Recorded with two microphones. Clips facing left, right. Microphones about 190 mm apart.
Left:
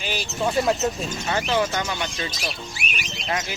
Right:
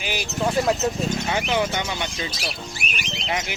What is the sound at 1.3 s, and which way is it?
Speech, 15° right (ahead or behind).